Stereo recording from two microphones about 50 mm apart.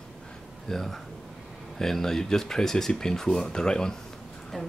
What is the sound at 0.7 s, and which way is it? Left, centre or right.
Speech, centre.